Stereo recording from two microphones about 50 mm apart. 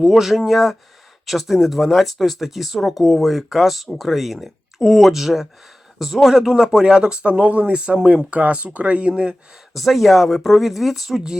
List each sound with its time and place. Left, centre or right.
0.2 s speech: centre
9.7 s speech: centre